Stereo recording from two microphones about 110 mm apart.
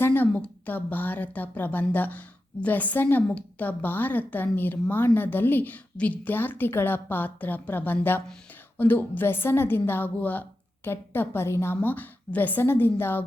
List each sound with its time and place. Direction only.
0.0 s a woman's voice: 20° left (ahead or behind)